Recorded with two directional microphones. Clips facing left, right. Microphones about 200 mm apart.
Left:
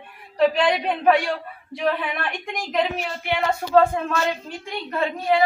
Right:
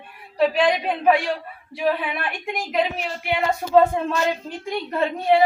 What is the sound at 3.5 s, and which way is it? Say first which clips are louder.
Speech: right 1 dB; 20° right (ahead or behind).